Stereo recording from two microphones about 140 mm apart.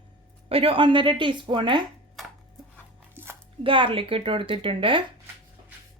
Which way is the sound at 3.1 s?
15° right (ahead or behind).